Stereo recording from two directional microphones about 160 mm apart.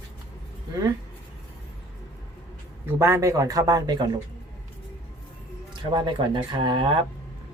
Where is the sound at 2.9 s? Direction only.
15° right (ahead or behind).